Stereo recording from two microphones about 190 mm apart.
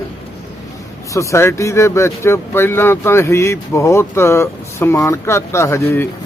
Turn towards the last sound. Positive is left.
turn(degrees=10)  # may be behind; listen again after turning